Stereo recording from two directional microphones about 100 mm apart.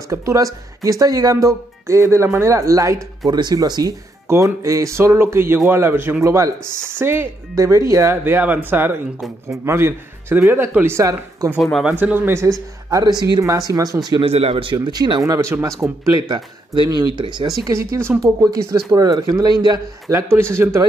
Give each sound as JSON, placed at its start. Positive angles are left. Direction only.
{"t": 0.1, "sound": "speech", "side_deg": -30}
{"t": 3.3, "sound": "speech", "side_deg": -45}
{"t": 4.3, "sound": "speech", "side_deg": -25}
{"t": 8.2, "sound": "speech", "side_deg": -20}
{"t": 11.0, "sound": "speech", "side_deg": -35}
{"t": 11.9, "sound": "speech", "side_deg": -20}
{"t": 12.9, "sound": "speech", "side_deg": -40}
{"t": 14.2, "sound": "speech", "side_deg": -85}
{"t": 14.9, "sound": "speech", "side_deg": -50}
{"t": 15.2, "sound": "speech", "side_deg": -35}
{"t": 16.2, "sound": "speech", "side_deg": -45}
{"t": 17.6, "sound": "speech", "side_deg": -25}
{"t": 20.3, "sound": "speech", "side_deg": -25}